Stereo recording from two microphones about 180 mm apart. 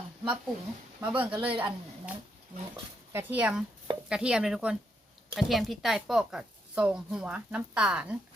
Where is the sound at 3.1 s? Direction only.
10° right (ahead or behind).